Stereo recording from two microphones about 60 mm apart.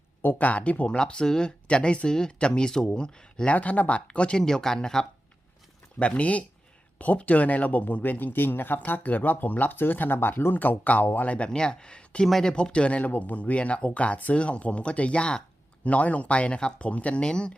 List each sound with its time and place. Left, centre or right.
0.2 s speech: left
0.9 s speech: centre
3.5 s speech: left
6.0 s speech: left
11.3 s speech: centre